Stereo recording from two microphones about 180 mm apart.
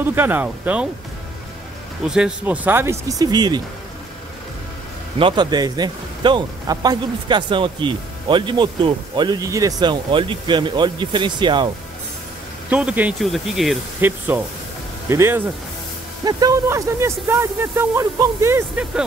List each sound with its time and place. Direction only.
0.0 s speech: 10° right (ahead or behind)
2.0 s speech: 5° right (ahead or behind); by 3.6 s 20° right (ahead or behind)
5.2 s speech: 25° right (ahead or behind)
12.6 s speech: 5° right (ahead or behind)
14.0 s speech: 10° right (ahead or behind)